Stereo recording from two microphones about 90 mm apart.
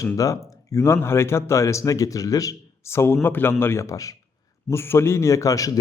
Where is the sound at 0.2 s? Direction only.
35° left (ahead or behind).